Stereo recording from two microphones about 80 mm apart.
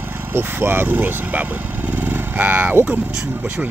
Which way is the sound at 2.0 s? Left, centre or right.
Right.